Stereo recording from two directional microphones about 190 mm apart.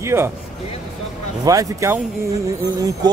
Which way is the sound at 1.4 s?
15° right (ahead or behind).